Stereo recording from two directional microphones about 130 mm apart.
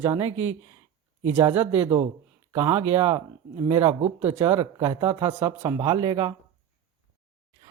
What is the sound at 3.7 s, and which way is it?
Speech, 45° right (ahead or behind).